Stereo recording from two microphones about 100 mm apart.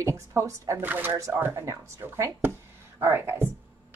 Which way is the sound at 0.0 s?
30° right (ahead or behind).